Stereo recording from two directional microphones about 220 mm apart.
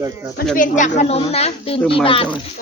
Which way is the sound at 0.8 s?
30° left (ahead or behind).